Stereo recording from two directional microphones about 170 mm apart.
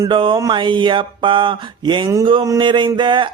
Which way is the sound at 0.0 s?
30° right (ahead or behind).